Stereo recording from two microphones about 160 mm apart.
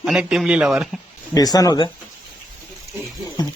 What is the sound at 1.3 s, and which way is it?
Speech, 25° left (ahead or behind).